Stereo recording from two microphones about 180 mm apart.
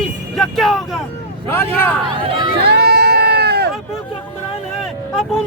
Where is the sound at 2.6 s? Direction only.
65° right (ahead or behind).